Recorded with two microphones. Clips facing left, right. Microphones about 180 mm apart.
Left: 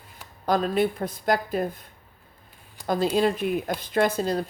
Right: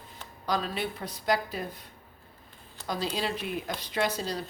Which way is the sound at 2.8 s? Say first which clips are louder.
Left 8 dB; 15° left (ahead or behind).